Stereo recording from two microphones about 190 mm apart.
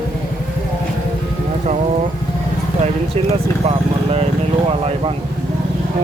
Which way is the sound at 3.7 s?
30° right (ahead or behind).